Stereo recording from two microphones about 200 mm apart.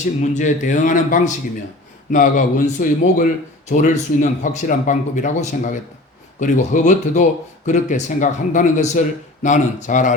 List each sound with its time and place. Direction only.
0.0 s speech: 35° left (ahead or behind)